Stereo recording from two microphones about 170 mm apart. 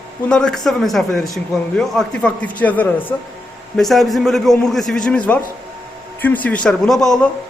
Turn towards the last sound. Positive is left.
turn(degrees=5)  # may be behind; listen again after turning